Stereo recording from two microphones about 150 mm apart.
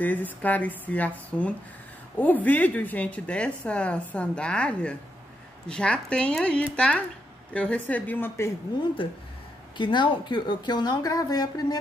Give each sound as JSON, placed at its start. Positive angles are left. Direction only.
{"t": 0.0, "sound": "a woman's voice", "side_deg": 10}
{"t": 9.8, "sound": "a woman's voice", "side_deg": 30}